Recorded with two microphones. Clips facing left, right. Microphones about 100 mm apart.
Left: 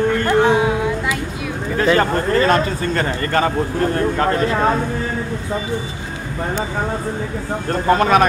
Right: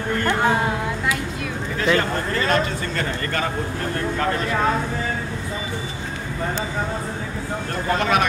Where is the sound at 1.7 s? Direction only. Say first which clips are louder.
Left 5 dB; 40° left (ahead or behind).